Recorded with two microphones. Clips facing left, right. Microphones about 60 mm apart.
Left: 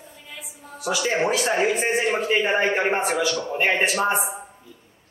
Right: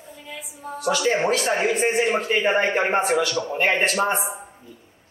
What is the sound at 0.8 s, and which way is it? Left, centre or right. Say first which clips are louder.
A man's voice: right 2 dB; centre.